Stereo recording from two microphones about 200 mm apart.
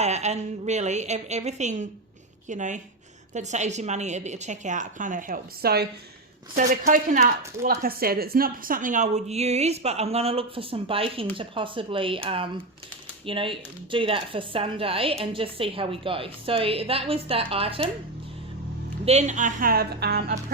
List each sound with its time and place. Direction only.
0.0 s speech: 35° right (ahead or behind)
19.0 s speech: 35° right (ahead or behind); by 20.4 s 50° right (ahead or behind)